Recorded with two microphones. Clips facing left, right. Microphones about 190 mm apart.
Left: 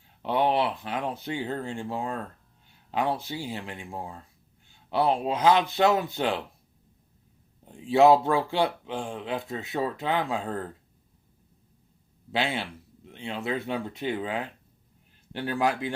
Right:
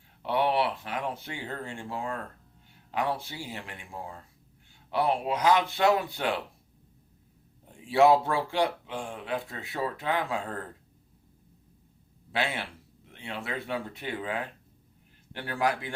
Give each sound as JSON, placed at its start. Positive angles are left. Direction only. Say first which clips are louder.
{"t": 0.2, "sound": "speech", "louder": "left 2 dB", "side_deg": 20}
{"t": 4.9, "sound": "speech", "louder": "left 2 dB", "side_deg": 25}
{"t": 7.9, "sound": "speech", "louder": "left 3 dB", "side_deg": 20}
{"t": 12.3, "sound": "speech", "louder": "left 3 dB", "side_deg": 25}